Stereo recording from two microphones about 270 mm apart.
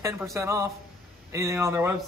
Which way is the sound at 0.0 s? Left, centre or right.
Centre.